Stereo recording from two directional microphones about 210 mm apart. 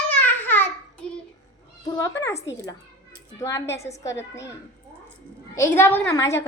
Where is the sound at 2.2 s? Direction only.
15° left (ahead or behind).